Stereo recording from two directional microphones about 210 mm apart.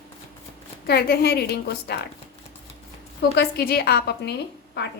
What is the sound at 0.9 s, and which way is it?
A woman's voice, 50° left (ahead or behind).